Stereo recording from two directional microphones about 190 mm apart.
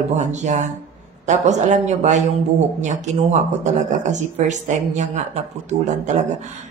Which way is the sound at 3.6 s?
40° right (ahead or behind).